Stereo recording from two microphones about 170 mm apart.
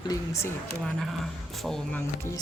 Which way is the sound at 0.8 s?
Centre (ahead or behind).